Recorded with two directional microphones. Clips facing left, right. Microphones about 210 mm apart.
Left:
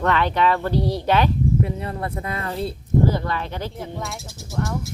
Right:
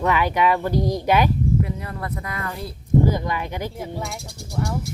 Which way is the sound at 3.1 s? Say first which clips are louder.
Even; 15° right (ahead or behind).